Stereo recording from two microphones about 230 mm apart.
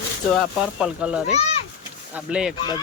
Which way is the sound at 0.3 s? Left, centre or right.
Centre.